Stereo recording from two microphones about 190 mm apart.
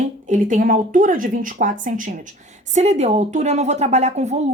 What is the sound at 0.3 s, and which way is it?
A woman's voice, 45° right (ahead or behind).